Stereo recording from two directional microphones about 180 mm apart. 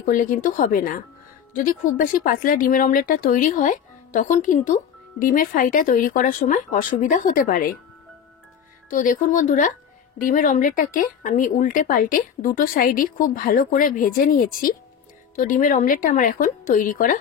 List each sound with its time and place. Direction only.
0.0 s speech: 50° left (ahead or behind)
8.9 s speech: 50° left (ahead or behind)